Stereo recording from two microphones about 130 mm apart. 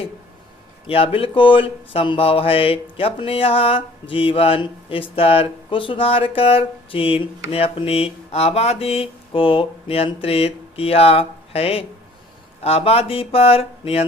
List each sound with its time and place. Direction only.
0.9 s speech: 45° left (ahead or behind)